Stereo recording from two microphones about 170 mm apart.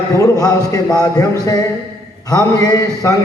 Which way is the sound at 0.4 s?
20° left (ahead or behind).